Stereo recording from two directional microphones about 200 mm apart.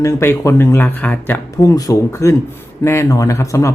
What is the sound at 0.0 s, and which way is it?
Speech, 15° left (ahead or behind).